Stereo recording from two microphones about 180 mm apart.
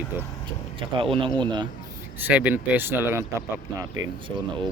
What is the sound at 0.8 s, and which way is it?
Speech, 30° right (ahead or behind).